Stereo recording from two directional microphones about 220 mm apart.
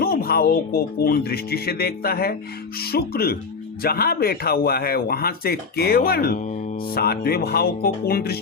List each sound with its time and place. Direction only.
0.0 s speech: 45° left (ahead or behind)